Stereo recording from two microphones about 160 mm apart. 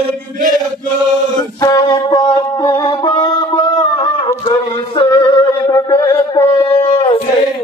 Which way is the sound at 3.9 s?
30° left (ahead or behind).